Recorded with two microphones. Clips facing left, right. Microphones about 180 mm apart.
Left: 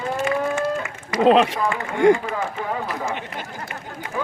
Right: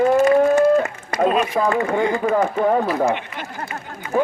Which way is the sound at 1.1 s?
80° left.